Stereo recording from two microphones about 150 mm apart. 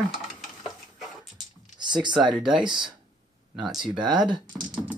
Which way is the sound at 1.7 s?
30° right (ahead or behind).